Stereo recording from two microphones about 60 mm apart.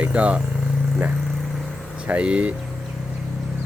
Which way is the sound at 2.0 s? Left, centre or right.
Right.